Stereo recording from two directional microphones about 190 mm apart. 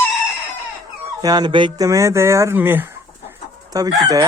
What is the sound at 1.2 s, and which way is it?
Chicken, 20° right (ahead or behind).